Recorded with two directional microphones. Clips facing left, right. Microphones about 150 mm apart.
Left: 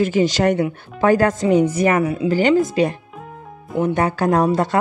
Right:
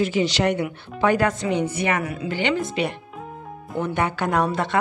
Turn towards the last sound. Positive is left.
turn(degrees=40)  # may be behind; listen again after turning